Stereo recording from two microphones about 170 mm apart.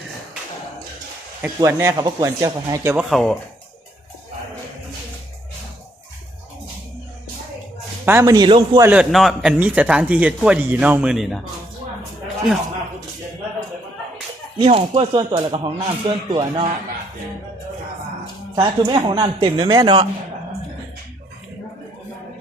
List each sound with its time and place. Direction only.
1.4 s speech: 15° right (ahead or behind)
3.1 s speech: 5° left (ahead or behind)
8.0 s speech: 15° right (ahead or behind)
8.8 s speech: 5° right (ahead or behind)
14.6 s speech: 35° right (ahead or behind)
18.5 s speech: 30° right (ahead or behind)